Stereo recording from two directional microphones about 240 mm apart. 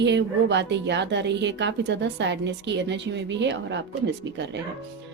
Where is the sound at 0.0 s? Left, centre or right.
Right.